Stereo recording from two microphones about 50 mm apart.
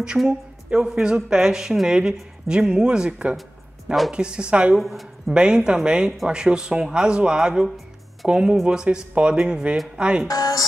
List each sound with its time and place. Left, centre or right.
0.2 s speech: centre
4.7 s speech: centre
5.3 s speech: centre